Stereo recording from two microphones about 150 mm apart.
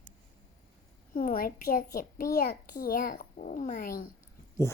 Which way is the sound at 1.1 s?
70° left (ahead or behind).